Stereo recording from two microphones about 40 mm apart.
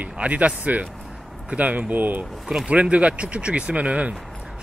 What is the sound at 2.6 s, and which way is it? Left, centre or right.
Speech, right.